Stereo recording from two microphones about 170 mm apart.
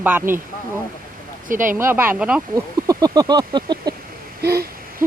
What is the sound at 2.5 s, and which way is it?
Speech, 20° right (ahead or behind).